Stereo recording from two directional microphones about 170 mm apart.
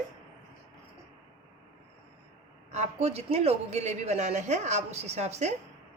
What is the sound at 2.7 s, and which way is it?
A woman's voice, 40° right (ahead or behind).